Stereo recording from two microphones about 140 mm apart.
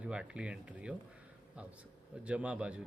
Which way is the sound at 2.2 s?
10° right (ahead or behind).